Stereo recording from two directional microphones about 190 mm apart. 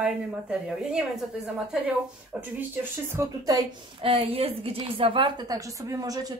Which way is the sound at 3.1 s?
20° right (ahead or behind).